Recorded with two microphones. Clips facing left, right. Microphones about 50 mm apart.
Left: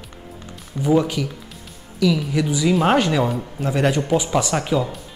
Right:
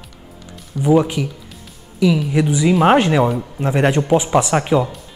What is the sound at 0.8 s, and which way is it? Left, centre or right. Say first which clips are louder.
Speech: right 3 dB; right.